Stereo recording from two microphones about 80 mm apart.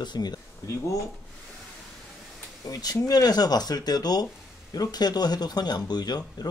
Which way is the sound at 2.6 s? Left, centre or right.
Left.